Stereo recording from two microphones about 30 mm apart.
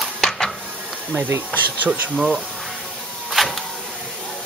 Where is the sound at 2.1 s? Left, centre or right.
Centre.